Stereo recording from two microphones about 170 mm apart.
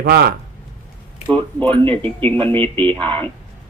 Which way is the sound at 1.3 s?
10° left (ahead or behind).